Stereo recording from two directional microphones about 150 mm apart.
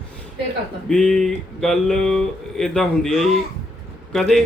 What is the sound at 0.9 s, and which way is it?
Speech, 5° left (ahead or behind).